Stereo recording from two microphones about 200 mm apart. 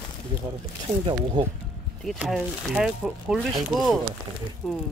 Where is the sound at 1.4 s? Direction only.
20° right (ahead or behind).